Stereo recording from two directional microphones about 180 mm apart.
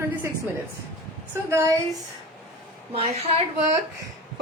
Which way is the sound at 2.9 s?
35° right (ahead or behind).